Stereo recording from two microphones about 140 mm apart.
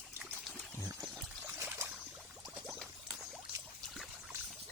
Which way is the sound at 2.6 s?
5° left (ahead or behind).